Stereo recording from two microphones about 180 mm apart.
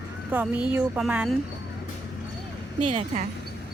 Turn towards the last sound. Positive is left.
turn(degrees=-35)  # may be behind; listen again after turning